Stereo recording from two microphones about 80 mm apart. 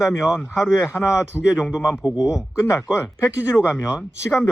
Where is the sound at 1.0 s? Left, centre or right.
Left.